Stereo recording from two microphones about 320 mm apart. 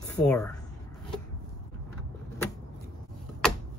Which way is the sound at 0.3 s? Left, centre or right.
Centre.